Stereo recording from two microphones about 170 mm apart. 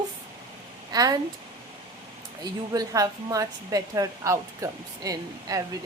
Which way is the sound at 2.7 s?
20° right (ahead or behind).